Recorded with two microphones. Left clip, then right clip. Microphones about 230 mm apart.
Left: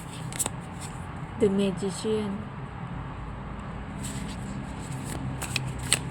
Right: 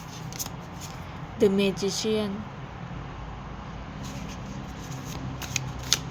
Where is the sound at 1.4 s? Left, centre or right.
Right.